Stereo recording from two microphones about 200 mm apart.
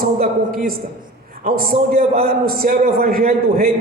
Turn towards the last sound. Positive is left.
turn(degrees=-45)  # may be behind; listen again after turning